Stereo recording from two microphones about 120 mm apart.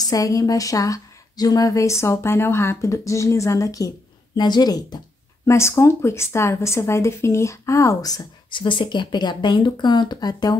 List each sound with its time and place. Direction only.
0.0 s speech: 30° left (ahead or behind)